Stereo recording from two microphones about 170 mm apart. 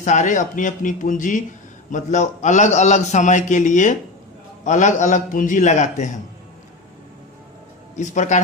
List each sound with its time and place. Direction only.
0.0 s a man's voice: 45° left (ahead or behind)
8.0 s a man's voice: 45° left (ahead or behind)